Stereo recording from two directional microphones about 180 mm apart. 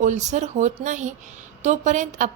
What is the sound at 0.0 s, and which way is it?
A woman's voice, 40° right (ahead or behind).